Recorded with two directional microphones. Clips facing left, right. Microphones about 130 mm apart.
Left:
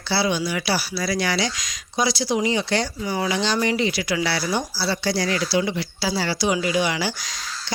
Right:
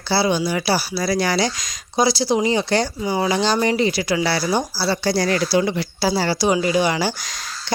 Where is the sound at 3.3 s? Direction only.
40° right (ahead or behind).